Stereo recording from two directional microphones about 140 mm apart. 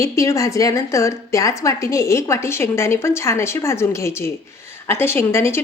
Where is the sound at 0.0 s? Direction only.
20° left (ahead or behind).